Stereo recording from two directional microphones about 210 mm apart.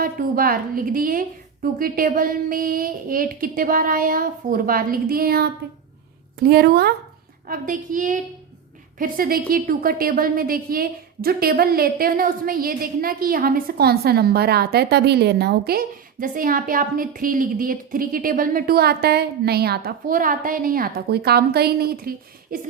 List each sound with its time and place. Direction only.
0.0 s a woman's voice: 45° right (ahead or behind)